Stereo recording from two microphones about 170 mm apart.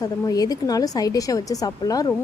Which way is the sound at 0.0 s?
20° left (ahead or behind).